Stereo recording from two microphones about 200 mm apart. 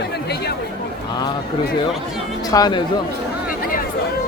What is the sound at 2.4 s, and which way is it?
Speech, 20° left (ahead or behind).